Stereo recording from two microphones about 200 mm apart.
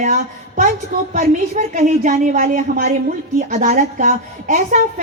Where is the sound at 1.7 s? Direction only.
40° right (ahead or behind).